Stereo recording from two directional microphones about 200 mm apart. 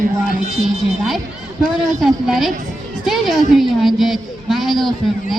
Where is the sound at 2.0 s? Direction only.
Centre (ahead or behind).